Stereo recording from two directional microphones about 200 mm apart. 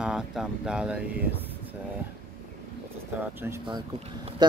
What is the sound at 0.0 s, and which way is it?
Speech, 5° right (ahead or behind).